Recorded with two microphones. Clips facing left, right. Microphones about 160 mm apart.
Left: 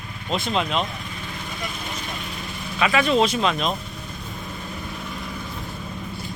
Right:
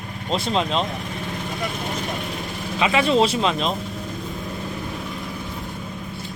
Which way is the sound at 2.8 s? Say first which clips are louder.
Right 1 dB; 25° right (ahead or behind).